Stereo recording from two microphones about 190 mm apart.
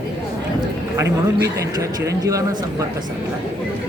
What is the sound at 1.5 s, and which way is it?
Speech, 15° right (ahead or behind).